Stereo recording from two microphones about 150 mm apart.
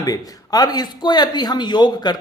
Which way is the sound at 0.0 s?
25° left (ahead or behind).